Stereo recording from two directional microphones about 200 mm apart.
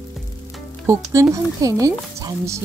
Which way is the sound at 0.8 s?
15° right (ahead or behind).